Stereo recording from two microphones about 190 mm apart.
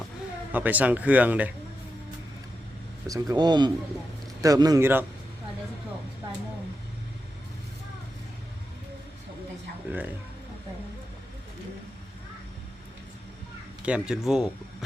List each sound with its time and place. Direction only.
0.5 s speech: 10° right (ahead or behind)
3.1 s a man's voice: 20° right (ahead or behind)
13.8 s speech: 5° right (ahead or behind)